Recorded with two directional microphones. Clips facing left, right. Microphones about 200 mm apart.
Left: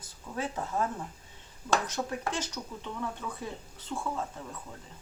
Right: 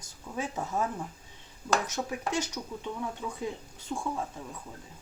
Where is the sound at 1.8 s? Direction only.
10° right (ahead or behind).